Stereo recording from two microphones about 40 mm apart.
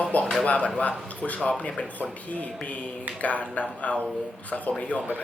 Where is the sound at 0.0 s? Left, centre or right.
Left.